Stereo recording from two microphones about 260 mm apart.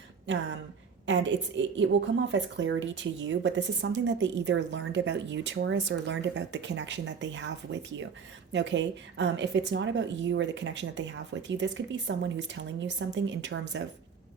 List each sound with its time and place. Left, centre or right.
1.0 s a woman's voice: right